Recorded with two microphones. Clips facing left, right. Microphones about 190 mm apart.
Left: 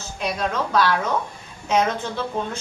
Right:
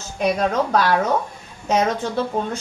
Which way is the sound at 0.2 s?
45° right (ahead or behind).